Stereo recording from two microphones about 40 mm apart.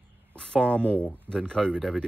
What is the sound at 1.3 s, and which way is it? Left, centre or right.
Speech, right.